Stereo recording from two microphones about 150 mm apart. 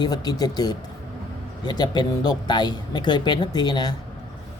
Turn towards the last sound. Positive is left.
turn(degrees=30)  # may be behind; listen again after turning